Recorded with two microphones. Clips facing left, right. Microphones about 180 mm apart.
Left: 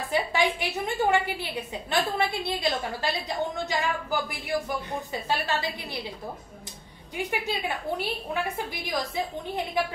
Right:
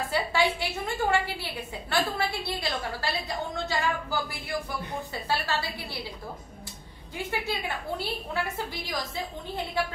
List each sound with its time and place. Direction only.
0.1 s a woman's voice: 15° left (ahead or behind)
7.2 s a woman's voice: 15° left (ahead or behind)